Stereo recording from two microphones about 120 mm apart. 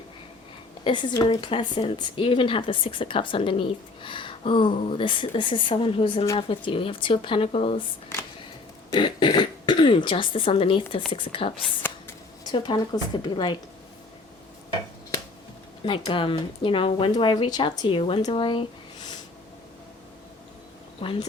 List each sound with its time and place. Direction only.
0.9 s speech: 40° left (ahead or behind)
8.9 s speech: 40° left (ahead or behind)
15.9 s speech: 45° left (ahead or behind)
18.2 s a sound: 45° left (ahead or behind)
21.0 s speech: 50° left (ahead or behind)